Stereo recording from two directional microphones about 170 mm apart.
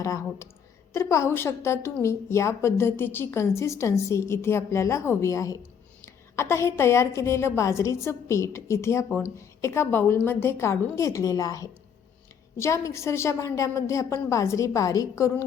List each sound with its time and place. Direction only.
0.0 s a woman's voice: 20° left (ahead or behind)